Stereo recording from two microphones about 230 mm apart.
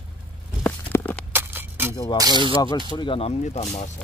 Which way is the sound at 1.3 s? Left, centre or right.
Centre.